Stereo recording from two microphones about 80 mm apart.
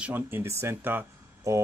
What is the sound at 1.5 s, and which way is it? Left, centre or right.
Speech, right.